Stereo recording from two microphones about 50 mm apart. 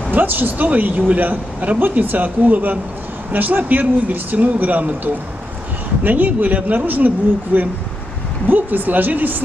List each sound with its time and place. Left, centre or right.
0.1 s speech: right